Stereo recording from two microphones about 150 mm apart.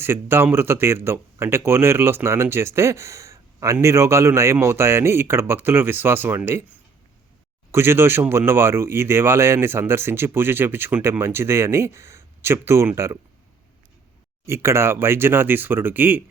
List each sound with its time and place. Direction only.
0.0 s speech: 15° right (ahead or behind)
14.4 s speech: 20° right (ahead or behind)